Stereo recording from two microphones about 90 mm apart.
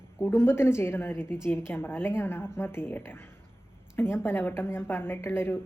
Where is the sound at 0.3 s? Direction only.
25° left (ahead or behind).